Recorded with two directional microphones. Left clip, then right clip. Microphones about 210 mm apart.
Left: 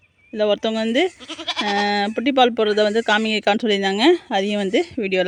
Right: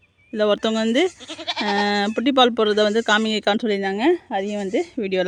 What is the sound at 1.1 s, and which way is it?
Speech, 45° left (ahead or behind).